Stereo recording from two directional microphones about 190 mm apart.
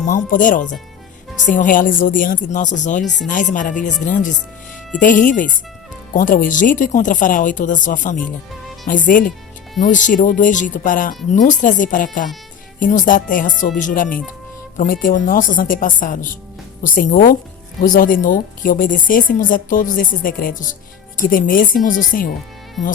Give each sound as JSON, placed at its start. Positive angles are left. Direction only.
{"t": 0.0, "sound": "a woman's voice", "side_deg": 45}
{"t": 8.2, "sound": "speech", "side_deg": 0}
{"t": 8.9, "sound": "a woman's voice", "side_deg": 45}